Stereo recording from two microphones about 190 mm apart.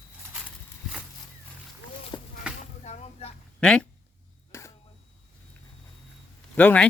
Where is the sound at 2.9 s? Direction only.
35° left (ahead or behind).